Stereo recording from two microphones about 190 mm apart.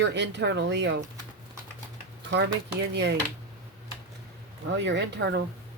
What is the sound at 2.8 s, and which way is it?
Speech, 65° right (ahead or behind).